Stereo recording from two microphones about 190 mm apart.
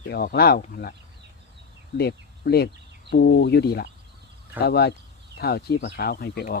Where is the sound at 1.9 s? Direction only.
55° left (ahead or behind).